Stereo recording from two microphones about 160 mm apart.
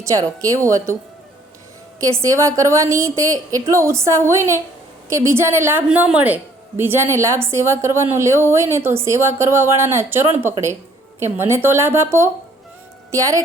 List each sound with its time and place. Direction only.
0.0 s a woman's voice: 20° right (ahead or behind)
2.2 s a woman's voice: 20° right (ahead or behind)